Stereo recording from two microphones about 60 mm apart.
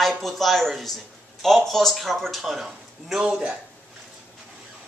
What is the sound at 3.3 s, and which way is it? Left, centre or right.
Speech, centre.